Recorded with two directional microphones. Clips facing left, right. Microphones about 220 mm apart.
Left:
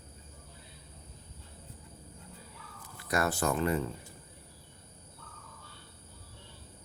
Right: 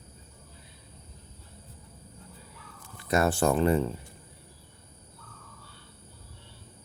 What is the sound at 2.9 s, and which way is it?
Speech, 25° right (ahead or behind).